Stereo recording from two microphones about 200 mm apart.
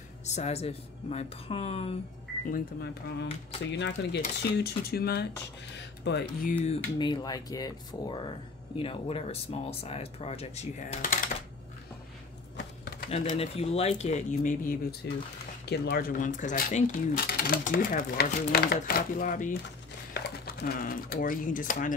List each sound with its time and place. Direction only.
0.2 s speech: 35° left (ahead or behind)
2.5 s speech: 50° left (ahead or behind)
6.6 s speech: 25° left (ahead or behind)
12.5 s typewriter: 50° left (ahead or behind)
13.1 s speech: 30° left (ahead or behind)